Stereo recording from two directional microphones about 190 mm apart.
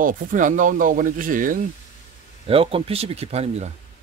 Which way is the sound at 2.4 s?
30° right (ahead or behind).